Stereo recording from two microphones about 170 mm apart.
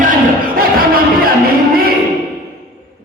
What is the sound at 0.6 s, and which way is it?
Music, 60° right (ahead or behind).